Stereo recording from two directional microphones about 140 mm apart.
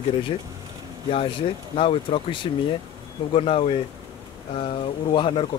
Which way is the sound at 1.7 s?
40° left (ahead or behind).